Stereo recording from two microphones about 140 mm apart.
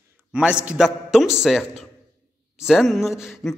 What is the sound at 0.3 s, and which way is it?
A man's voice, 5° right (ahead or behind).